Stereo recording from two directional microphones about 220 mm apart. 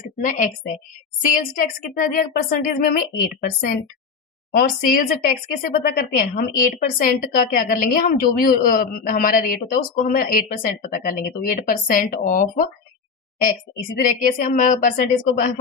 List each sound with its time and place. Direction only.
0.2 s a woman's voice: 35° left (ahead or behind)